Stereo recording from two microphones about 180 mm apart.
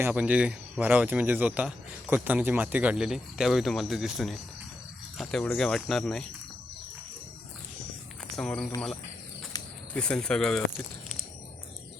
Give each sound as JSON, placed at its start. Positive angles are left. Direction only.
{"t": 0.0, "sound": "speech", "side_deg": -10}
{"t": 8.4, "sound": "speech", "side_deg": 5}
{"t": 9.5, "sound": "cricket", "side_deg": 20}
{"t": 9.9, "sound": "speech", "side_deg": 5}